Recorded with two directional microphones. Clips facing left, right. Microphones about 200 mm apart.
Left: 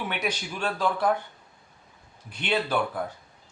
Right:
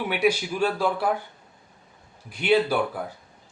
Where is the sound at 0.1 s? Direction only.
10° right (ahead or behind).